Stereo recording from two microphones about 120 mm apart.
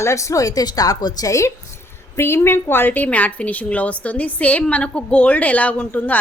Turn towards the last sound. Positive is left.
turn(degrees=15)  # may be behind; listen again after turning